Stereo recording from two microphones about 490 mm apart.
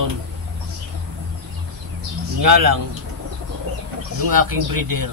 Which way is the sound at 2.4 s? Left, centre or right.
Right.